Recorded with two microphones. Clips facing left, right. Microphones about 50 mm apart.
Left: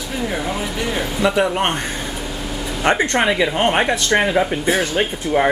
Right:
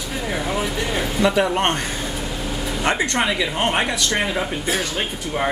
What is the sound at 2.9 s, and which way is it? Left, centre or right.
Speech, left.